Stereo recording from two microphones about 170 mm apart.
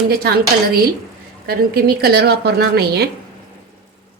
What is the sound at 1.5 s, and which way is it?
A woman's voice, 60° right (ahead or behind).